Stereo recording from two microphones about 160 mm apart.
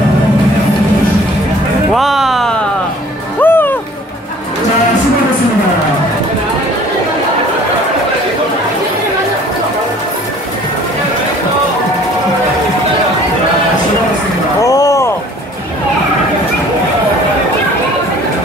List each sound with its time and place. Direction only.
2.0 s music: centre (ahead or behind)
3.3 s music: 10° left (ahead or behind)
14.6 s a sound: 20° left (ahead or behind)